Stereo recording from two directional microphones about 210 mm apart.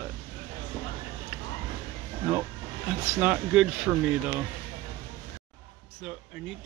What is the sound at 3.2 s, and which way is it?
Speech, 5° right (ahead or behind).